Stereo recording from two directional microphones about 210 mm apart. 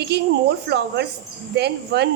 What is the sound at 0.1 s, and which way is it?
Speech, 50° right (ahead or behind).